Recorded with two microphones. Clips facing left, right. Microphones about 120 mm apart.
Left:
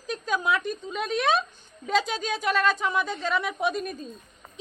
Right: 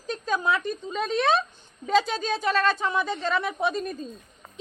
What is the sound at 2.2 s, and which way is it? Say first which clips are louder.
Speech: right 2 dB; 30° right (ahead or behind).